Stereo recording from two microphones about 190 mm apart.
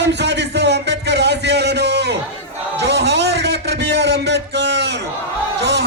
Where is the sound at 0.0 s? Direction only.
65° right (ahead or behind).